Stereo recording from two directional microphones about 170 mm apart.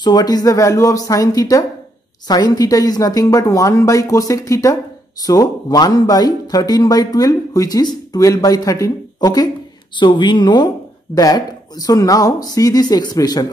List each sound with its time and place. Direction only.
0.0 s speech: 25° left (ahead or behind)